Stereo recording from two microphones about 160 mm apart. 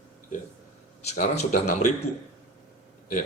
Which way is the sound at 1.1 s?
55° left (ahead or behind).